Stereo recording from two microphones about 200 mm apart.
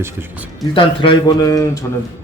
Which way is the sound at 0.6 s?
25° left (ahead or behind).